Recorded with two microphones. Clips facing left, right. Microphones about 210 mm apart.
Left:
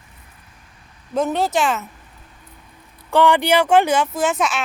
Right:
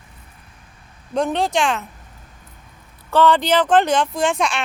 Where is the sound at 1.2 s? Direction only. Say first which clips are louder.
Even; 5° left (ahead or behind).